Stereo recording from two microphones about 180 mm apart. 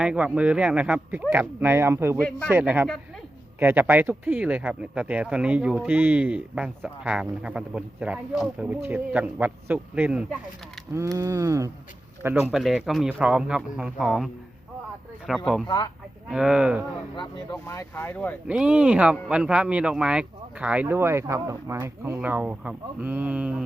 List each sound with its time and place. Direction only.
0.0 s speech: 5° right (ahead or behind)
10.9 s speech: 15° right (ahead or behind)
15.3 s speech: centre (ahead or behind)
15.6 s speech: 25° left (ahead or behind)
16.3 s speech: 5° right (ahead or behind)
17.2 s speech: 20° left (ahead or behind)
18.4 s speech: 5° right (ahead or behind)